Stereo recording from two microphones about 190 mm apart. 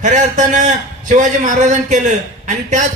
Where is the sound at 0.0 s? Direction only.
40° right (ahead or behind).